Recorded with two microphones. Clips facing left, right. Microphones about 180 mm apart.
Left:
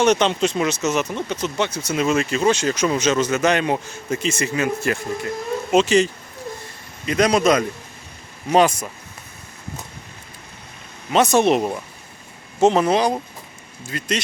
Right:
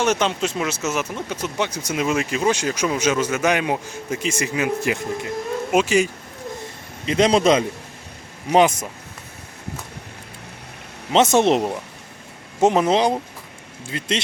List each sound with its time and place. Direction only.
0.0 s speech: 5° right (ahead or behind)
7.0 s speech: 25° right (ahead or behind)
11.1 s speech: 20° right (ahead or behind)